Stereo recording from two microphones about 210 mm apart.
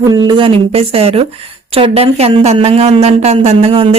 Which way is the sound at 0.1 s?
20° right (ahead or behind).